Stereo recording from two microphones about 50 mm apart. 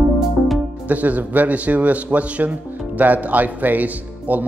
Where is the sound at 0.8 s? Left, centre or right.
Right.